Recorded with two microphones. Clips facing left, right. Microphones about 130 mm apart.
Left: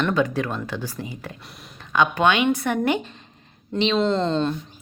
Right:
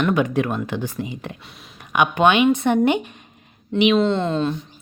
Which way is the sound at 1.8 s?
15° right (ahead or behind).